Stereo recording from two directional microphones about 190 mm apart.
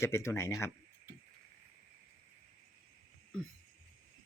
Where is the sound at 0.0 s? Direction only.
15° left (ahead or behind).